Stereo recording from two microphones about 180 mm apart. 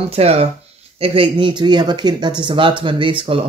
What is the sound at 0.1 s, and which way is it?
Speech, 35° right (ahead or behind).